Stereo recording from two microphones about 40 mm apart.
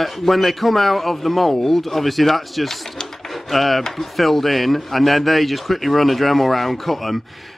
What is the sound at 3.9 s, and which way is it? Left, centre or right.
Speech, centre.